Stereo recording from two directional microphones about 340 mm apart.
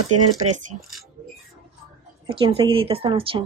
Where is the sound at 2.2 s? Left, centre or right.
Centre.